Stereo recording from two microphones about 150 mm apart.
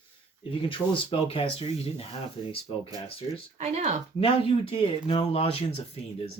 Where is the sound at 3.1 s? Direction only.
35° left (ahead or behind).